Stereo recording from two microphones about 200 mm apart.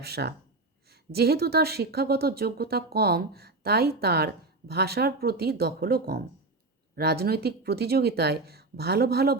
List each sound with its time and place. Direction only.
0.0 s speech: 55° right (ahead or behind)